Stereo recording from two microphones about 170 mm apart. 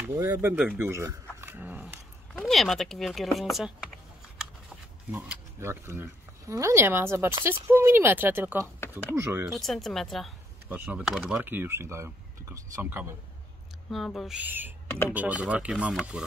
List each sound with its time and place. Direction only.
0.0 s speech: 15° right (ahead or behind)
1.4 s dog: 10° right (ahead or behind)
2.4 s speech: centre (ahead or behind)
5.1 s speech: 15° right (ahead or behind)
9.6 s speech: centre (ahead or behind); by 13.1 s 20° right (ahead or behind)
13.8 s speech: centre (ahead or behind)